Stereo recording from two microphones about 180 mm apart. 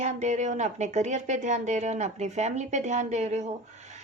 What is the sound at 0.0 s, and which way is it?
A woman's voice, 40° right (ahead or behind).